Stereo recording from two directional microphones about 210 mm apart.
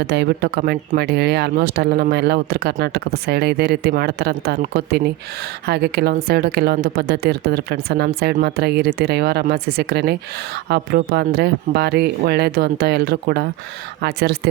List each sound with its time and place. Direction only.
0.0 s a woman's voice: 50° right (ahead or behind)